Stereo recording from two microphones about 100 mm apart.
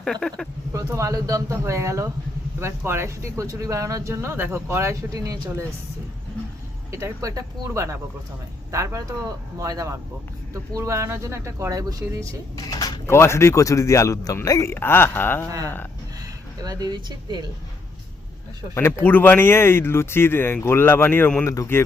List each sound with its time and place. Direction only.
0.0 s speech: 5° left (ahead or behind)
0.7 s speech: 30° right (ahead or behind)
6.9 s speech: 30° right (ahead or behind)
12.5 s speech: 40° left (ahead or behind)
13.1 s speech: 25° left (ahead or behind)
14.7 s speech: 20° left (ahead or behind)
15.4 s speech: 35° right (ahead or behind)
18.7 s speech: 25° left (ahead or behind)
21.4 s speech: 30° left (ahead or behind)